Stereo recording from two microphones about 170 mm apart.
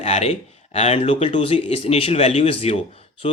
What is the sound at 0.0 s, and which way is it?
Speech, 40° left (ahead or behind).